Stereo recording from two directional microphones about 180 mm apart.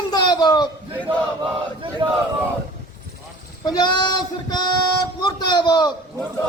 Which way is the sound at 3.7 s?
20° left (ahead or behind).